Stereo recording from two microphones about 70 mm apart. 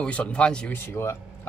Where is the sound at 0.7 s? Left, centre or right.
Left.